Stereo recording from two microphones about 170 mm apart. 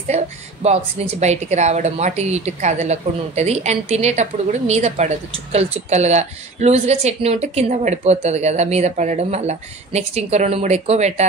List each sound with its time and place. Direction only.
0.1 s a woman's voice: 40° right (ahead or behind)